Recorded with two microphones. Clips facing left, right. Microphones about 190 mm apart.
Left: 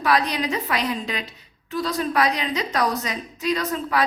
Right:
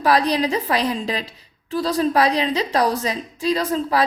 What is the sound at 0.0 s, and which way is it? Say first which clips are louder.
A woman's voice: right 4 dB; 35° right (ahead or behind).